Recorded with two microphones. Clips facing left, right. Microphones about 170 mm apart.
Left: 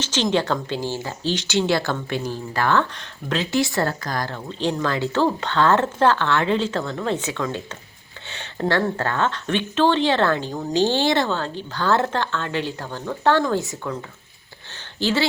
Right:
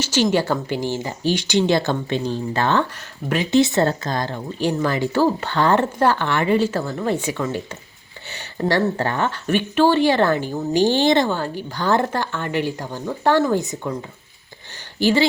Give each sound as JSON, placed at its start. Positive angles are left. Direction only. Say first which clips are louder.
{"t": 0.0, "sound": "speech", "louder": "right 3 dB", "side_deg": -10}
{"t": 2.9, "sound": "speech", "louder": "right 2 dB", "side_deg": -10}